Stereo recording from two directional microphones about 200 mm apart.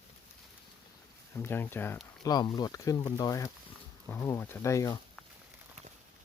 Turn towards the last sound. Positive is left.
turn(degrees=15)  # may be behind; listen again after turning